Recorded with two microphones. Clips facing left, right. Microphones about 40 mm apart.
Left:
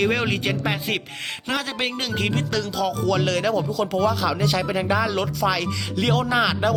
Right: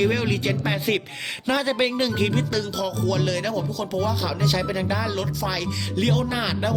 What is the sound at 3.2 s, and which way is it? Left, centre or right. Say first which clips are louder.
Speech: left 3 dB; centre.